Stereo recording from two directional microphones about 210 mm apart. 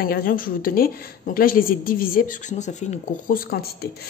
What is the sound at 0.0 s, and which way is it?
A woman's voice, 45° left (ahead or behind).